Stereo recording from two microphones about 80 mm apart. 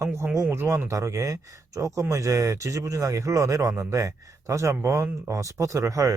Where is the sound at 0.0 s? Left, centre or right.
Right.